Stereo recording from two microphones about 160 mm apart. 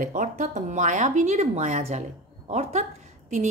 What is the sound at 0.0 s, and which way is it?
A woman's voice, 55° right (ahead or behind).